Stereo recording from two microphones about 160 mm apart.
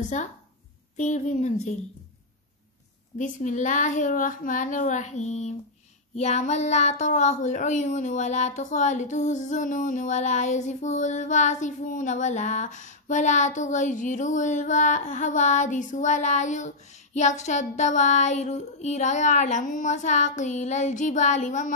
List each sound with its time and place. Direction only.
0.9 s speech: 45° left (ahead or behind)
3.2 s speech: 50° left (ahead or behind)